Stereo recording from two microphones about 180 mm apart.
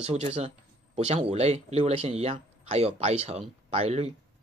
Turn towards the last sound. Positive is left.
turn(degrees=-35)  # may be behind; listen again after turning